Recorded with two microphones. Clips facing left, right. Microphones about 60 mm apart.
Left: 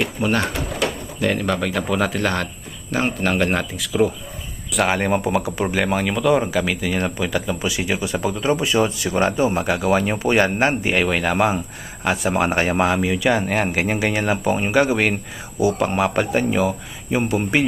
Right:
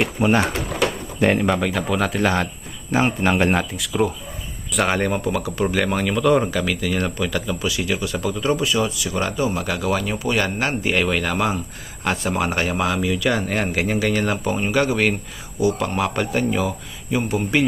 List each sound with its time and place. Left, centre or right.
0.0 s speech: centre
5.0 s speech: centre
5.7 s speech: centre; by 10.9 s left
10.9 s speech: centre
12.0 s speech: centre
12.3 s speech: left